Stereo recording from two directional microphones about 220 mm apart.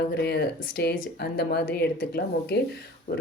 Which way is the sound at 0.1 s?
50° left (ahead or behind).